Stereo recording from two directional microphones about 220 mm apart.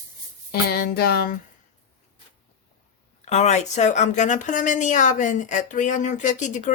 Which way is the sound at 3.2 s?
30° left (ahead or behind).